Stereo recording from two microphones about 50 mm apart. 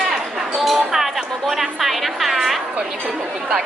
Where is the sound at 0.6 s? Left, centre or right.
Centre.